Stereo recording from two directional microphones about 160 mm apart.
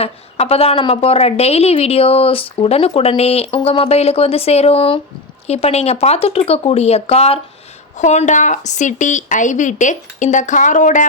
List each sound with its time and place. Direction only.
0.0 s a woman's voice: 40° left (ahead or behind)